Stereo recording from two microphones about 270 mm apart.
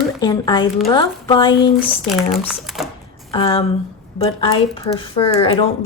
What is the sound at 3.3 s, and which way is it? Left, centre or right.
A woman's voice, centre.